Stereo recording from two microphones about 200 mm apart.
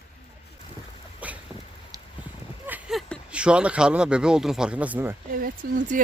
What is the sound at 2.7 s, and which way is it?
Speech, 5° right (ahead or behind).